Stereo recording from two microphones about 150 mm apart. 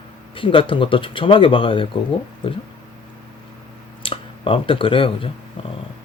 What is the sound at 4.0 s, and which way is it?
Speech, 35° left (ahead or behind).